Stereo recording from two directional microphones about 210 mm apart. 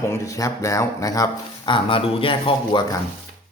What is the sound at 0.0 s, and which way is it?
Speech, 15° left (ahead or behind).